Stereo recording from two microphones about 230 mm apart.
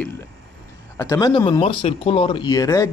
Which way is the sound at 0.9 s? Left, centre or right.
Centre.